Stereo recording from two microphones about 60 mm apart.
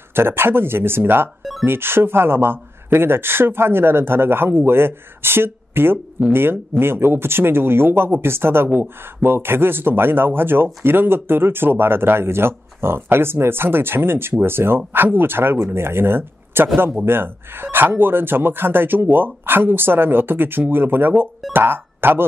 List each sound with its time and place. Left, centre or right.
0.1 s speech: right
1.4 s music: centre
1.7 s speech: right